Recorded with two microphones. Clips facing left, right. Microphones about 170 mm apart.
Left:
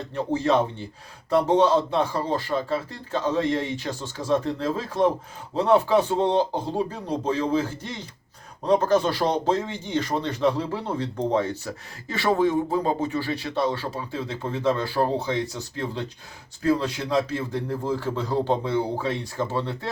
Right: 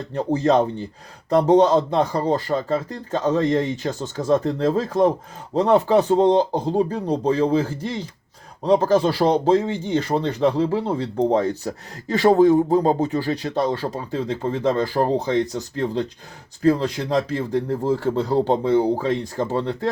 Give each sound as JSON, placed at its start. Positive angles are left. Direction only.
{"t": 0.1, "sound": "speech", "side_deg": -40}